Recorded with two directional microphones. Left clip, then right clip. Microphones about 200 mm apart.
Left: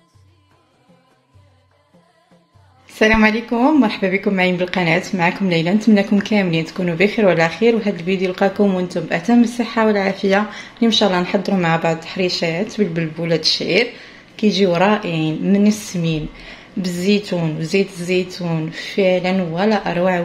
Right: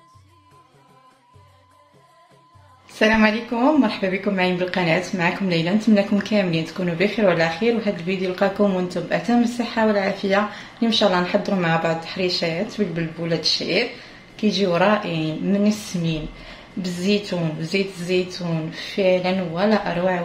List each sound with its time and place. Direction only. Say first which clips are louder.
2.9 s speech: left 3 dB; 30° left (ahead or behind)